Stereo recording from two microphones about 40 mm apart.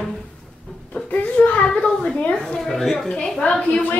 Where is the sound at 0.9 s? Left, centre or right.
Left.